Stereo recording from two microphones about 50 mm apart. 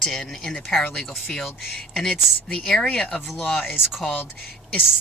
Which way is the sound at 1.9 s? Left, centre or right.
Centre.